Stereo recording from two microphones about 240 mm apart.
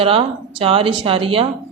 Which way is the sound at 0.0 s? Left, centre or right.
Right.